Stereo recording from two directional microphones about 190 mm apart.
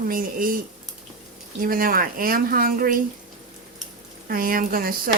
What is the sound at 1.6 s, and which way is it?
Speech, 50° right (ahead or behind).